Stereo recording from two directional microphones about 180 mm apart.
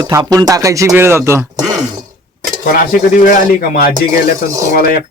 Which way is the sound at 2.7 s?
50° left (ahead or behind).